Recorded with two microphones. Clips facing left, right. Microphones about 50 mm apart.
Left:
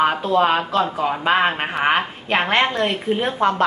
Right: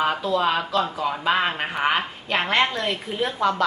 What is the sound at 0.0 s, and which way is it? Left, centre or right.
Speech, left.